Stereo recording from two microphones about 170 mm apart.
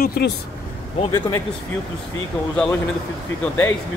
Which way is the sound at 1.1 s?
15° left (ahead or behind).